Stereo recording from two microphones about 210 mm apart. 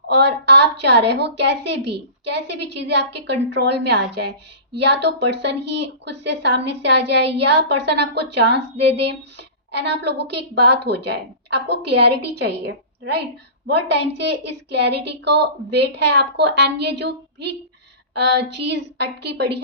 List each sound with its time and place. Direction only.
0.1 s a woman's voice: 55° right (ahead or behind)